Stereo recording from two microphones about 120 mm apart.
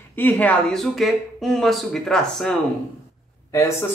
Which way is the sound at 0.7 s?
Centre (ahead or behind).